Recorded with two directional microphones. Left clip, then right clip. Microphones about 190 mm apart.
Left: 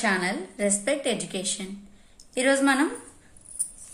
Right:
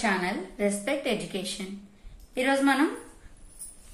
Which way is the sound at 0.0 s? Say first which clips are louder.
Left 2 dB; 30° left (ahead or behind).